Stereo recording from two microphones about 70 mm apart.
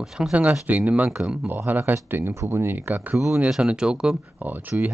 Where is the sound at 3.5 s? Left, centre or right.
Centre.